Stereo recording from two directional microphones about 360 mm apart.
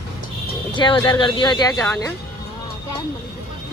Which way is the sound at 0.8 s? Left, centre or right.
Centre.